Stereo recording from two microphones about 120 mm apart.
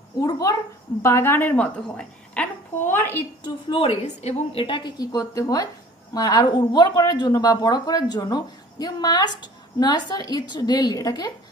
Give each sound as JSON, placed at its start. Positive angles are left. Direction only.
{"t": 0.2, "sound": "a woman's voice", "side_deg": 30}
{"t": 1.0, "sound": "a woman's voice", "side_deg": 20}
{"t": 3.4, "sound": "a woman's voice", "side_deg": 45}
{"t": 4.0, "sound": "a woman's voice", "side_deg": 65}